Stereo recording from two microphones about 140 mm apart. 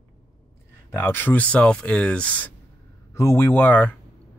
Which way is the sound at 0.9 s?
15° left (ahead or behind).